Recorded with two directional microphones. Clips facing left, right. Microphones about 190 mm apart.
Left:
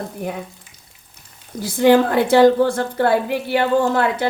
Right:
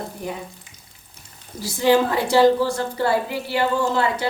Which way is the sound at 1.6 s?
55° left (ahead or behind).